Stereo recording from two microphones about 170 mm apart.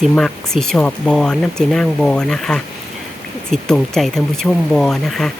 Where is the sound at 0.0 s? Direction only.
5° left (ahead or behind).